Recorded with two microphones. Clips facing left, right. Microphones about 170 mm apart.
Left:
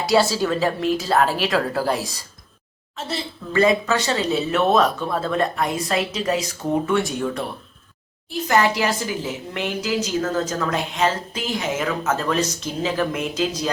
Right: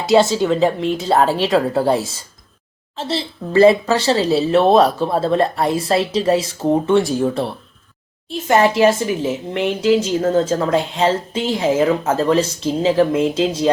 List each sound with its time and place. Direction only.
0.0 s speech: 25° right (ahead or behind)